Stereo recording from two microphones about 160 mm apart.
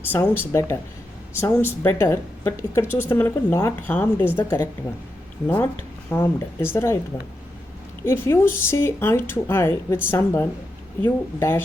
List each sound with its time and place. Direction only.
0.0 s a woman's voice: 15° left (ahead or behind)
6.1 s a woman's voice: 15° left (ahead or behind)
8.0 s a woman's voice: 15° left (ahead or behind)